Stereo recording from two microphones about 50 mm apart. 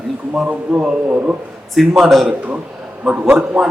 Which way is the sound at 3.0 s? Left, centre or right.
Right.